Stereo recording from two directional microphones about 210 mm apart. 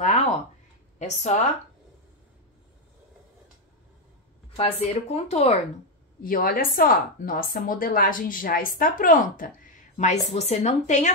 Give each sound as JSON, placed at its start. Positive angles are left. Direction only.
{"t": 0.0, "sound": "a sound", "side_deg": 30}
{"t": 0.9, "sound": "speech", "side_deg": 35}
{"t": 4.6, "sound": "a woman's voice", "side_deg": 30}
{"t": 6.2, "sound": "a woman's voice", "side_deg": 45}